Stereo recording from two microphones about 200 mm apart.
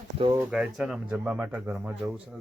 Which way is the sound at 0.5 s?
5° right (ahead or behind).